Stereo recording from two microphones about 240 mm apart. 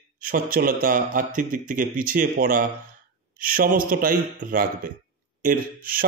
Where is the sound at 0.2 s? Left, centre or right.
Right.